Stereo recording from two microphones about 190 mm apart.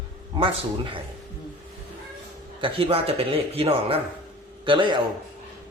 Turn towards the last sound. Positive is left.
turn(degrees=-25)  # may be behind; listen again after turning